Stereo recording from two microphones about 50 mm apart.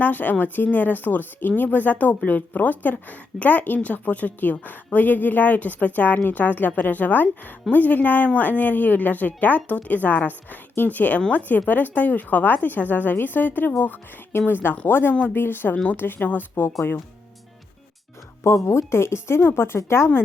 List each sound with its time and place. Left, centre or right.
0.0 s a woman's voice: left
15.1 s speech: left
15.4 s a woman's voice: left
18.4 s a woman's voice: left